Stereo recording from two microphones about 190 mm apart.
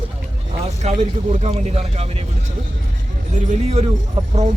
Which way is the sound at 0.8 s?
35° right (ahead or behind).